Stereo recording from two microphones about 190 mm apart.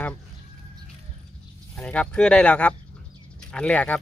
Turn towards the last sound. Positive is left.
turn(degrees=5)  # may be behind; listen again after turning